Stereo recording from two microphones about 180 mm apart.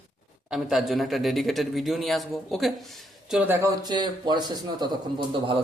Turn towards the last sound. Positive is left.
turn(degrees=-25)  # may be behind; listen again after turning